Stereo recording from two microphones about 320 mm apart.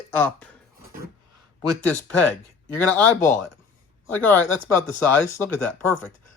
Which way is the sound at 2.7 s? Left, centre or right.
Centre.